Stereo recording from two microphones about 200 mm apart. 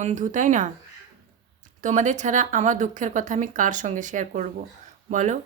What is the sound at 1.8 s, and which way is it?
Speech, 40° right (ahead or behind).